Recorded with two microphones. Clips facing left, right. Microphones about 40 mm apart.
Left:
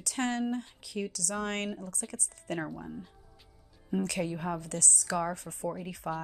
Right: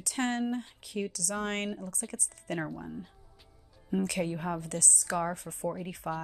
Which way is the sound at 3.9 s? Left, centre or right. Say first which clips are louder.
Right 1 dB; right.